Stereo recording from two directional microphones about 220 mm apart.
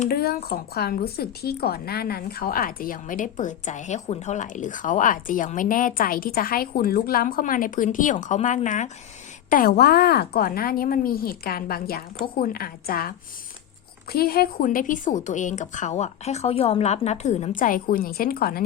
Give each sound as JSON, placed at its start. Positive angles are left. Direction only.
{"t": 0.0, "sound": "a woman's voice", "side_deg": 45}